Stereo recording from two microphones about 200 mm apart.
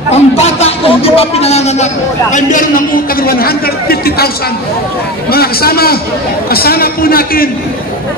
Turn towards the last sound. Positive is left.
turn(degrees=45)  # may be behind; listen again after turning